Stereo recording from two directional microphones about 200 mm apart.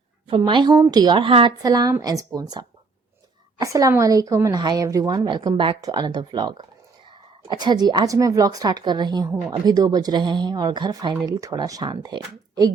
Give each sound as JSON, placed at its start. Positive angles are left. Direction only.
{"t": 0.3, "sound": "speech", "side_deg": -25}